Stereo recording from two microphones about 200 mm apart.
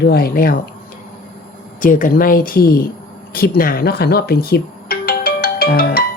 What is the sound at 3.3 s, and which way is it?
Music, 50° left (ahead or behind).